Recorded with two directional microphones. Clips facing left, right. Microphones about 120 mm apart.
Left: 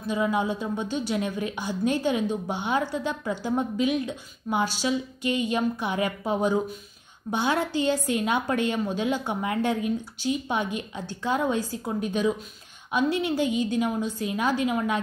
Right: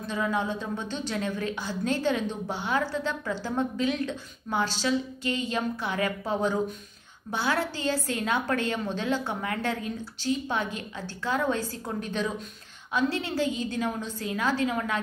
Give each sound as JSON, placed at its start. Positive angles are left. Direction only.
{"t": 0.0, "sound": "a woman's voice", "side_deg": 15}